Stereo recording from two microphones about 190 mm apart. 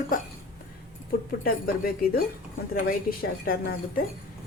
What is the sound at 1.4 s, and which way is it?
A woman's voice, 50° left (ahead or behind).